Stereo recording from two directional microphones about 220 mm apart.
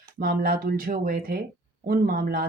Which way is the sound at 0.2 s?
40° right (ahead or behind).